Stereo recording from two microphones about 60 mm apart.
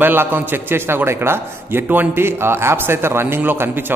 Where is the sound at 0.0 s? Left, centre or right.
Right.